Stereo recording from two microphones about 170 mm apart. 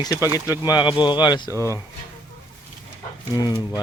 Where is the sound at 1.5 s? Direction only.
20° right (ahead or behind).